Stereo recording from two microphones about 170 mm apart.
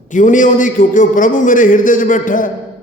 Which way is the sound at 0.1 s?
50° left (ahead or behind).